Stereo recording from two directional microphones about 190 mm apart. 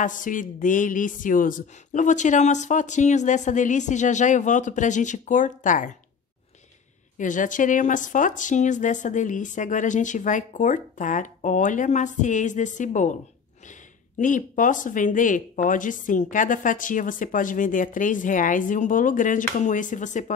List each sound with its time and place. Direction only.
0.0 s a woman's voice: 45° left (ahead or behind)
7.2 s a woman's voice: 40° left (ahead or behind)
14.1 s speech: 45° left (ahead or behind)